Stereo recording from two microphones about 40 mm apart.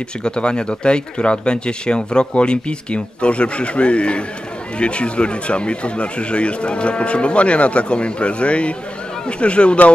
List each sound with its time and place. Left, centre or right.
0.2 s speech: left